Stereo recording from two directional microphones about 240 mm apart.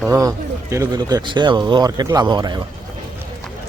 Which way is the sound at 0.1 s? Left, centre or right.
Centre.